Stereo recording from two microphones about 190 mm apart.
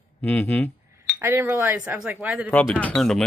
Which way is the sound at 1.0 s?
10° right (ahead or behind).